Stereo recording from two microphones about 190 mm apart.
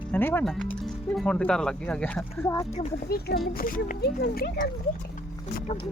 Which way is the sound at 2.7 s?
40° left (ahead or behind).